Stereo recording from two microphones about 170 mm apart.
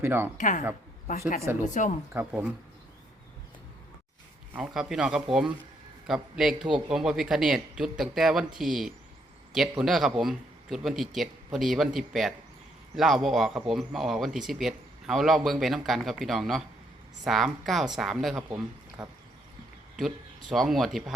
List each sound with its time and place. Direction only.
0.0 s speech: 15° right (ahead or behind)
0.3 s speech: 50° left (ahead or behind)
1.4 s speech: 15° right (ahead or behind)
4.5 s a man's voice: 5° right (ahead or behind)